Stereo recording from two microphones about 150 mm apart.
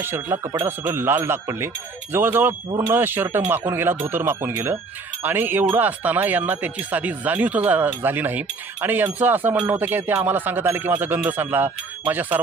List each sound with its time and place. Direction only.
0.0 s speech: 20° right (ahead or behind)